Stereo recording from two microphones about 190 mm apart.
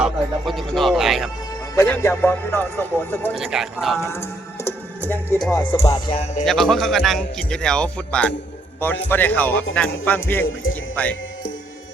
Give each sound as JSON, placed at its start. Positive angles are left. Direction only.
{"t": 0.0, "sound": "speech", "side_deg": 0}
{"t": 1.7, "sound": "speech", "side_deg": 15}
{"t": 3.3, "sound": "speech", "side_deg": 0}
{"t": 4.0, "sound": "music", "side_deg": 15}
{"t": 6.1, "sound": "music", "side_deg": 30}
{"t": 6.4, "sound": "speech", "side_deg": 0}
{"t": 10.4, "sound": "speech", "side_deg": 90}
{"t": 10.9, "sound": "speech", "side_deg": 10}